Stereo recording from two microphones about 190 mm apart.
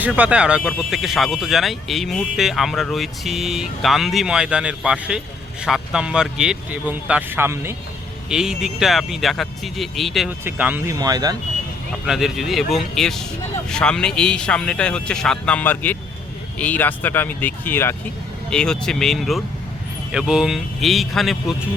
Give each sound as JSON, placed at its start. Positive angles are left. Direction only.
{"t": 0.0, "sound": "speech", "side_deg": -5}
{"t": 12.0, "sound": "speech", "side_deg": 0}